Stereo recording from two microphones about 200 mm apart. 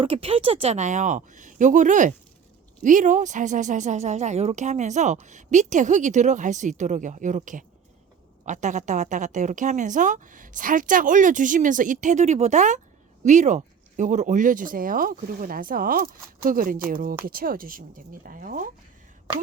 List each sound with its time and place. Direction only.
0.0 s a woman's voice: 30° right (ahead or behind)